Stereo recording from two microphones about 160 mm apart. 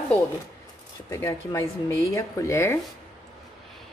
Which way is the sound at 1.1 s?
20° left (ahead or behind).